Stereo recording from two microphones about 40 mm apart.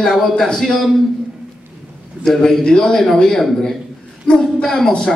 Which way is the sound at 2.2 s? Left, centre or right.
Centre.